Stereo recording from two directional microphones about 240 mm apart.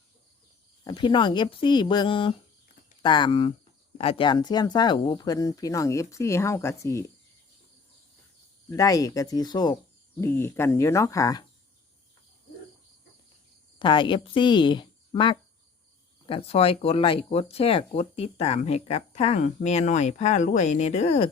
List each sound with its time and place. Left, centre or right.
0.9 s speech: centre
8.7 s speech: centre
13.7 s speech: centre